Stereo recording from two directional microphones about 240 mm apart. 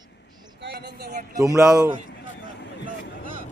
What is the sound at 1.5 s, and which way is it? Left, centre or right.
Speech, centre.